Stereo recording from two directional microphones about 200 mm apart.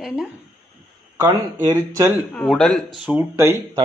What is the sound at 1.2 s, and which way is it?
Speech, 15° right (ahead or behind).